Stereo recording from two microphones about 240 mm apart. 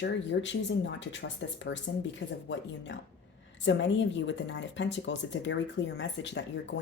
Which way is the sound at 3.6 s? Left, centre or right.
Left.